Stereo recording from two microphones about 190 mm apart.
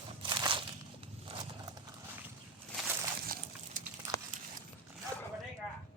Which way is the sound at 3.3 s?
50° right (ahead or behind).